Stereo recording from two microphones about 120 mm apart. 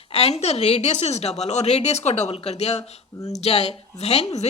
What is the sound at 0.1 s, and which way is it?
A woman's voice, 60° left (ahead or behind).